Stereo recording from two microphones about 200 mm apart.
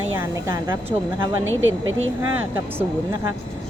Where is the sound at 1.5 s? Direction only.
75° right (ahead or behind).